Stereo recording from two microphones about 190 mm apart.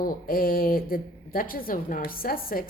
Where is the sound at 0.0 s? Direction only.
50° left (ahead or behind).